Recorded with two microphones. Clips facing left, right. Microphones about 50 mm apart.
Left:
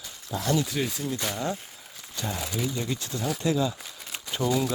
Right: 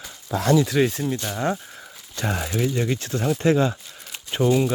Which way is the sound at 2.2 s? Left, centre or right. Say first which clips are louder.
Right 6 dB; right.